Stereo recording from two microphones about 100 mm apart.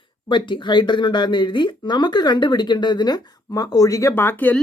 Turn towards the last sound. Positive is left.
turn(degrees=15)  # may be behind; listen again after turning